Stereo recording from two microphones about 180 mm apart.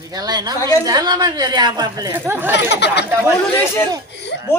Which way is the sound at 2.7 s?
70° left (ahead or behind).